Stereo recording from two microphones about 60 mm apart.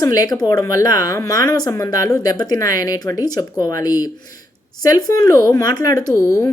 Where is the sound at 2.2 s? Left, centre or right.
Left.